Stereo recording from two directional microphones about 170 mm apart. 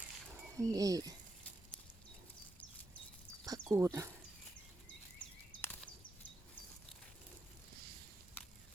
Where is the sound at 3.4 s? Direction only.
20° right (ahead or behind).